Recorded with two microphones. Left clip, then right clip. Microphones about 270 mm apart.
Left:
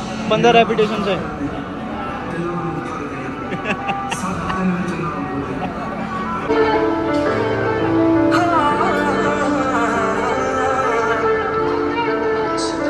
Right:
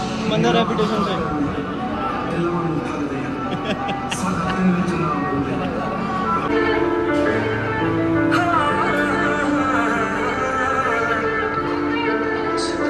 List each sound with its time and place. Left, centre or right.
0.3 s a man's voice: centre
8.4 s music: left